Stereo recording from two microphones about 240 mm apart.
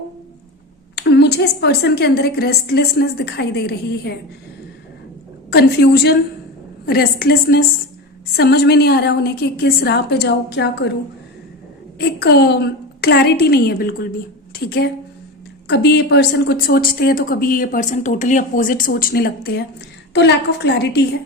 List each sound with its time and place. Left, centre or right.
0.9 s a woman's voice: left
5.5 s a woman's voice: left
11.9 s a woman's voice: left